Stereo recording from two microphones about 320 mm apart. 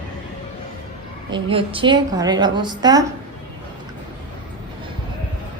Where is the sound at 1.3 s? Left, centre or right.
Centre.